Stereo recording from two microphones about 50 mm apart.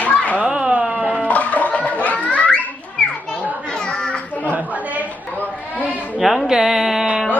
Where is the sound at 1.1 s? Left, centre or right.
Left.